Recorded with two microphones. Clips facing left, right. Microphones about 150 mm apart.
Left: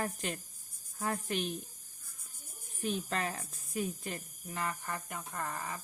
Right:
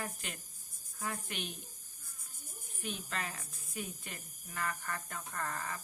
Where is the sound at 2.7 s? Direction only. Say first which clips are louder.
Left 6 dB; 35° left (ahead or behind).